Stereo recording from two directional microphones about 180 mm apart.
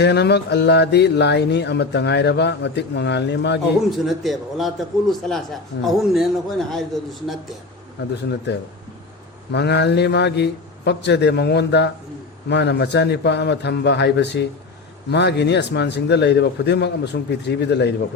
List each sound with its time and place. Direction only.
0.0 s speech: 70° left (ahead or behind)
3.9 s a man's voice: centre (ahead or behind)
8.1 s speech: 70° left (ahead or behind)